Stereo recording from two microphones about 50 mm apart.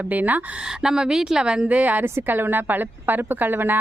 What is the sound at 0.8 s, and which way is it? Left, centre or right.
Speech, centre.